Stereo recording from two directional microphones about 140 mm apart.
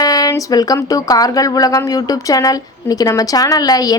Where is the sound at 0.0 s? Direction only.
25° left (ahead or behind).